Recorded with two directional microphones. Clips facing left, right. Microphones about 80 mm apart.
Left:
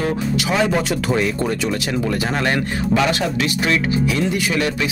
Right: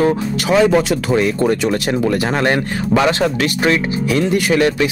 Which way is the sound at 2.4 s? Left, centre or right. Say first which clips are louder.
Right 3 dB; right.